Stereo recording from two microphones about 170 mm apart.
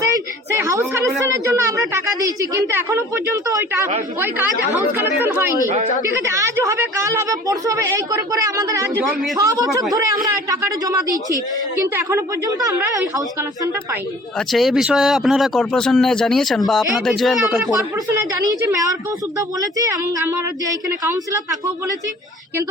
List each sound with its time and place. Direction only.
0.5 s a woman's voice: 15° right (ahead or behind)
14.3 s speech: centre (ahead or behind)
18.1 s a woman's voice: 20° right (ahead or behind)